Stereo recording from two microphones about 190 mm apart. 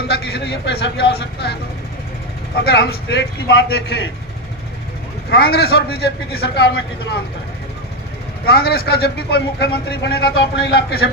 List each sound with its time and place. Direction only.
0.1 s a man's voice: 60° left (ahead or behind)
2.6 s a man's voice: 60° left (ahead or behind)
5.3 s a man's voice: 55° left (ahead or behind)
8.4 s a man's voice: 55° left (ahead or behind)